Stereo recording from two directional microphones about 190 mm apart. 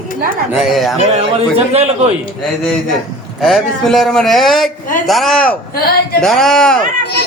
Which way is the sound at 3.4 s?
Centre (ahead or behind).